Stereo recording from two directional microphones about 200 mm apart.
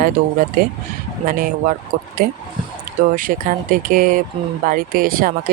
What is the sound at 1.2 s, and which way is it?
Speech, 45° right (ahead or behind).